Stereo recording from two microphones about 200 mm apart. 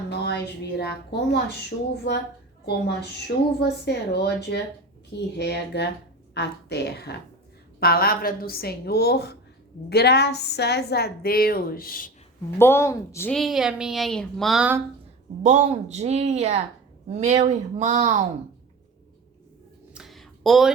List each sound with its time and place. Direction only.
0.1 s a woman's voice: 55° left (ahead or behind)
12.5 s a woman's voice: 10° left (ahead or behind); by 14.8 s 5° right (ahead or behind)
15.4 s speech: 35° right (ahead or behind)
19.9 s a sound: centre (ahead or behind)